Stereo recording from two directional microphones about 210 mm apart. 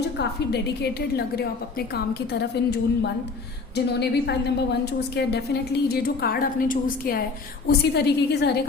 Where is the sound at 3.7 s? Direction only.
50° left (ahead or behind).